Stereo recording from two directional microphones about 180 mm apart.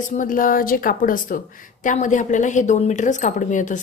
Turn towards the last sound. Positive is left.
turn(degrees=45)  # may be behind; listen again after turning